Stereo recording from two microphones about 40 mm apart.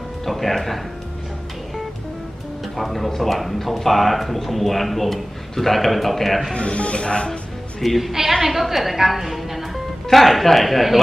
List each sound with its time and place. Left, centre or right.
0.2 s speech: centre
2.8 s a man's voice: centre
6.5 s speech: left
7.8 s a man's voice: centre